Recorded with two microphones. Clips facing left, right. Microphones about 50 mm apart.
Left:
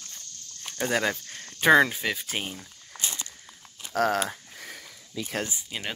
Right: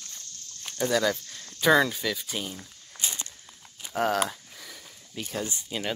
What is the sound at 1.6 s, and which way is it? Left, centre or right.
Speech, left.